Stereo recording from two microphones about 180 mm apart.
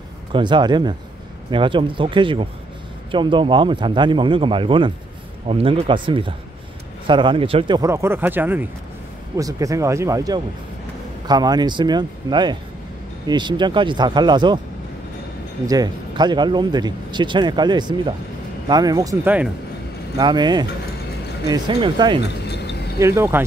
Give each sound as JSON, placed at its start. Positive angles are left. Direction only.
{"t": 0.3, "sound": "speech", "side_deg": -25}
{"t": 15.6, "sound": "speech", "side_deg": -20}
{"t": 19.2, "sound": "speech", "side_deg": -10}
{"t": 20.2, "sound": "speech", "side_deg": -25}
{"t": 22.2, "sound": "a sound", "side_deg": 70}
{"t": 22.9, "sound": "speech", "side_deg": -15}